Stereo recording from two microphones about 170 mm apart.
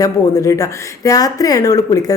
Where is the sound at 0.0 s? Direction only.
20° left (ahead or behind).